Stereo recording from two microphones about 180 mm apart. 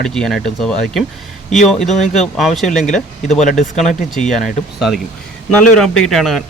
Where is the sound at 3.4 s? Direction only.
45° left (ahead or behind).